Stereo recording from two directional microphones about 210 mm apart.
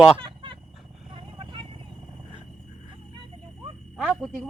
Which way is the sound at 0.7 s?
Centre (ahead or behind).